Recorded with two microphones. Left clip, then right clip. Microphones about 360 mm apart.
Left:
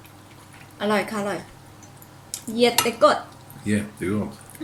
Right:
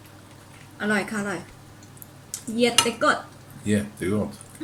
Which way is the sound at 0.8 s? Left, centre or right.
Centre.